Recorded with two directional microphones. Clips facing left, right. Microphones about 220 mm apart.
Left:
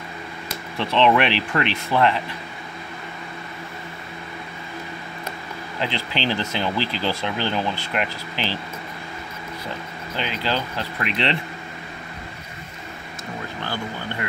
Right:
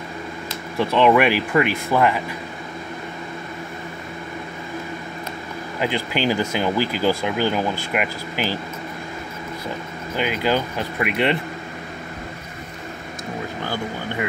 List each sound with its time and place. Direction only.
0.7 s speech: 10° right (ahead or behind)
5.8 s speech: 10° right (ahead or behind)
10.1 s speech: 10° right (ahead or behind)